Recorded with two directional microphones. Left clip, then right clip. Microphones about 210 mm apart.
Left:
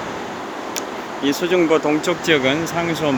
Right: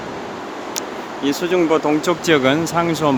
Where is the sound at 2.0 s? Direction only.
25° right (ahead or behind).